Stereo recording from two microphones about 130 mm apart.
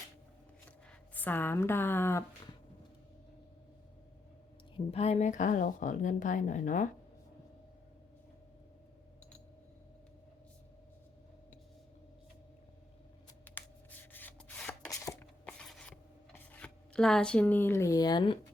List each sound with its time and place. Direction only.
0.9 s a woman's voice: 15° left (ahead or behind)
4.9 s speech: 55° left (ahead or behind); by 6.8 s 75° left (ahead or behind)
13.4 s writing: 15° left (ahead or behind)
14.1 s rub: 15° left (ahead or behind)
14.8 s a sound: 25° left (ahead or behind)
15.2 s a sound: 10° left (ahead or behind)
16.3 s speech: 10° left (ahead or behind); by 18.3 s 35° left (ahead or behind)